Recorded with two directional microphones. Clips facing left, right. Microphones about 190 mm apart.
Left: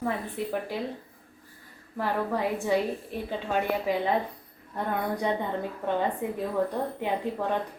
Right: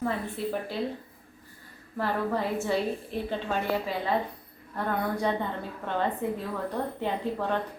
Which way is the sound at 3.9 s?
15° left (ahead or behind).